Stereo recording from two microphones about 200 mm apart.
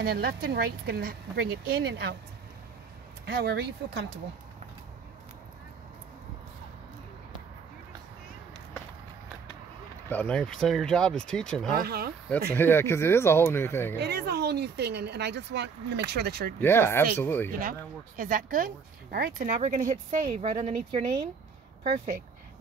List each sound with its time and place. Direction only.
0.0 s speech: 50° right (ahead or behind)
3.3 s speech: 50° right (ahead or behind)
10.0 s speech: 5° left (ahead or behind)
11.7 s speech: 50° right (ahead or behind)
12.3 s speech: 10° left (ahead or behind)
13.9 s speech: 55° right (ahead or behind)
16.6 s speech: 10° left (ahead or behind)
17.5 s speech: 45° right (ahead or behind)
21.8 s speech: 35° right (ahead or behind)